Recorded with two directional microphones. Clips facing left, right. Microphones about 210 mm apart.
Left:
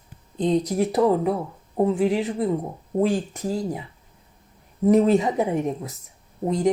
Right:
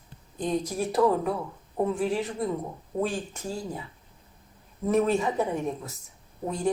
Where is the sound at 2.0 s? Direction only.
20° left (ahead or behind).